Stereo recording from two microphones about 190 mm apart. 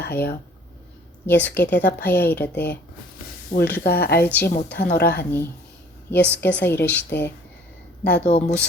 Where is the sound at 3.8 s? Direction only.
55° left (ahead or behind).